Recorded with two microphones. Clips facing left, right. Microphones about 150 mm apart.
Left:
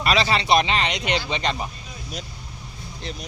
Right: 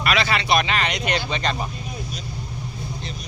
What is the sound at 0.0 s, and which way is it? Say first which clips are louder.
Speech: left 1 dB; 35° left (ahead or behind).